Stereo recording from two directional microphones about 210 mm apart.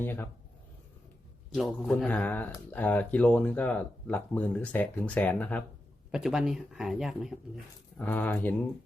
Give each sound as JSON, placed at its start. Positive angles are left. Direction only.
{"t": 0.0, "sound": "speech", "side_deg": 10}
{"t": 1.5, "sound": "speech", "side_deg": 0}
{"t": 7.9, "sound": "speech", "side_deg": 10}